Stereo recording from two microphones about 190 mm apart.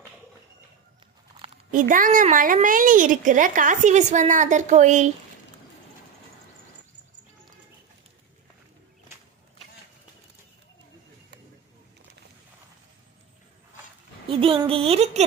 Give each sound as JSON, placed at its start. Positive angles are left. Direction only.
{"t": 1.7, "sound": "a woman's voice", "side_deg": -45}
{"t": 14.3, "sound": "speech", "side_deg": -30}